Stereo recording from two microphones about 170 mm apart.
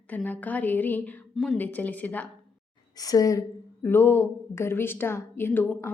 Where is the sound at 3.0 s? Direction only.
20° left (ahead or behind).